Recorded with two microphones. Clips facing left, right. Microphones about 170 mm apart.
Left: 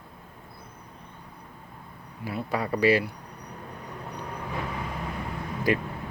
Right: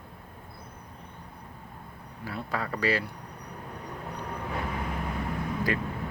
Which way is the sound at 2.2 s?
15° left (ahead or behind).